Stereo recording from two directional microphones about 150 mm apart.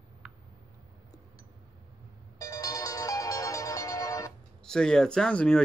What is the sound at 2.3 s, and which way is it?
Music, 25° left (ahead or behind).